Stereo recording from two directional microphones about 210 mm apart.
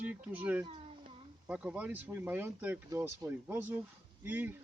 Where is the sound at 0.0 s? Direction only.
5° right (ahead or behind).